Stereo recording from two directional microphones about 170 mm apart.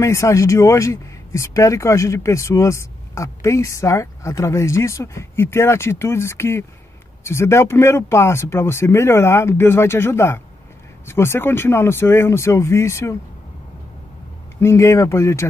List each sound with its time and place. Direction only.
0.0 s speech: 15° left (ahead or behind)
14.6 s speech: 15° left (ahead or behind)